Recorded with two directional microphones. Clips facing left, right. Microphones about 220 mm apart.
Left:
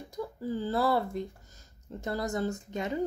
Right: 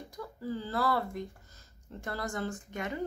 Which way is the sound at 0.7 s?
25° left (ahead or behind).